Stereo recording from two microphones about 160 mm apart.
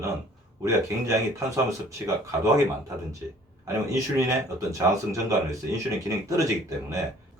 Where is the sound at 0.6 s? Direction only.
20° right (ahead or behind).